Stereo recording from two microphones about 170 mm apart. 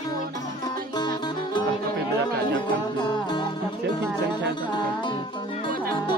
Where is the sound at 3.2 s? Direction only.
25° left (ahead or behind).